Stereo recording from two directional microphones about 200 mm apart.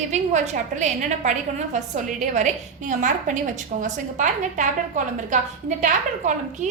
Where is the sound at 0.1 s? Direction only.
35° right (ahead or behind).